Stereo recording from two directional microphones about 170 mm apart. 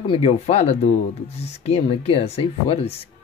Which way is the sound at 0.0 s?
35° left (ahead or behind).